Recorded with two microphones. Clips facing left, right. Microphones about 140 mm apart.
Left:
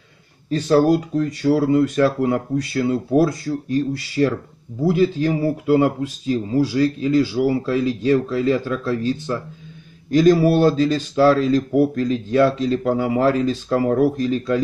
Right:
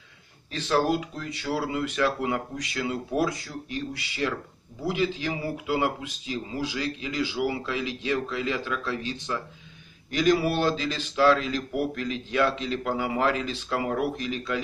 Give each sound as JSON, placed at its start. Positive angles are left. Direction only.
{"t": 0.5, "sound": "speech", "side_deg": 40}
{"t": 10.1, "sound": "speech", "side_deg": 35}